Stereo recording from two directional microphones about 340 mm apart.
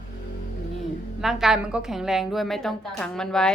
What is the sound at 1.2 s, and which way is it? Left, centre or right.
Speech, centre.